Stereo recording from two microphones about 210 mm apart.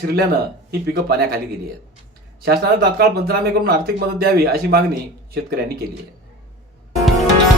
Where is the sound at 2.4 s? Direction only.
50° right (ahead or behind).